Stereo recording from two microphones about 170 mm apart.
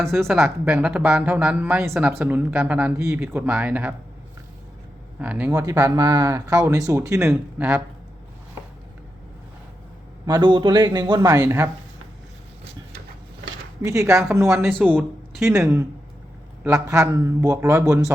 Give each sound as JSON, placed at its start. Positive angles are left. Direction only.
{"t": 0.3, "sound": "speech", "side_deg": -5}
{"t": 5.2, "sound": "speech", "side_deg": -10}
{"t": 5.5, "sound": "speech", "side_deg": -20}
{"t": 7.3, "sound": "speech", "side_deg": -5}
{"t": 10.2, "sound": "speech", "side_deg": -25}
{"t": 13.8, "sound": "speech", "side_deg": -20}